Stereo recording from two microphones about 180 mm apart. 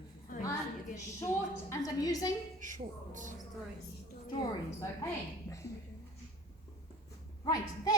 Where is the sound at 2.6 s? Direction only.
45° right (ahead or behind).